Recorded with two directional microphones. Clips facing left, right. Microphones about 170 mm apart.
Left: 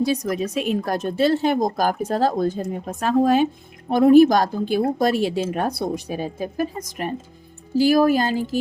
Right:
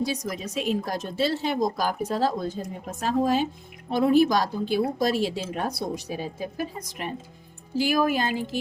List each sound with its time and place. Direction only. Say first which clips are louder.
0.0 s a woman's voice: left 7 dB; 55° left (ahead or behind); by 8.3 s 40° left (ahead or behind)